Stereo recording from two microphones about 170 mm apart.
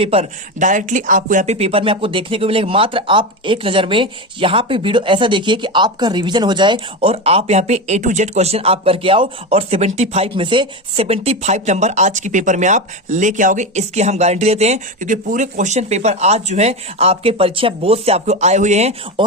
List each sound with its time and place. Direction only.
0.0 s speech: 35° right (ahead or behind)